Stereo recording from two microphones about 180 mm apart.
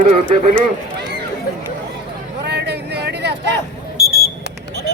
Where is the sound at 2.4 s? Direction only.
70° right (ahead or behind).